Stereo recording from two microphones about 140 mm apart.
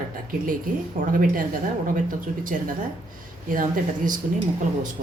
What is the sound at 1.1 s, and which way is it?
Speech, 75° right (ahead or behind).